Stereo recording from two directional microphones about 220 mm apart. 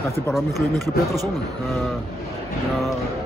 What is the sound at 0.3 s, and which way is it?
Speech, centre (ahead or behind).